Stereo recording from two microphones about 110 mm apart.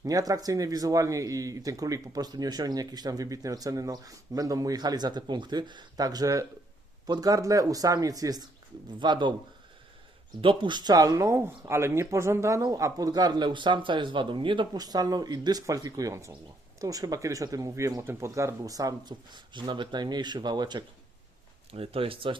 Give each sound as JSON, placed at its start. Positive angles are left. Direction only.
{"t": 0.0, "sound": "speech", "side_deg": -35}
{"t": 10.4, "sound": "speech", "side_deg": -50}
{"t": 21.7, "sound": "speech", "side_deg": -60}